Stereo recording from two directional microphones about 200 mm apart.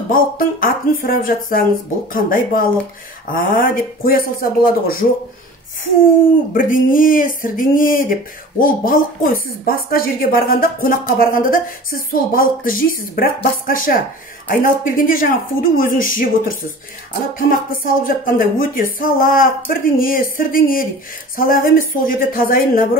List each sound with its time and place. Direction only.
0.1 s speech: 45° left (ahead or behind)
6.5 s speech: 45° left (ahead or behind)